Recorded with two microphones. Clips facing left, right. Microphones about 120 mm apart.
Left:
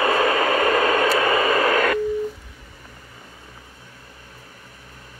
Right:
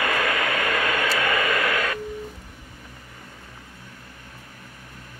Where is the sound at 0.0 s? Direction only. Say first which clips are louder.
Left 5 dB; 30° left (ahead or behind).